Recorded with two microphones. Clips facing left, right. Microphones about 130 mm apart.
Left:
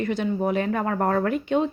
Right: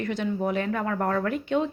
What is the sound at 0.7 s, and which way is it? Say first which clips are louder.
Speech: left 3 dB; 30° left (ahead or behind).